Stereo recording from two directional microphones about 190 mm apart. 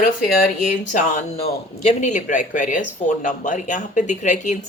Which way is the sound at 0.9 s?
40° left (ahead or behind).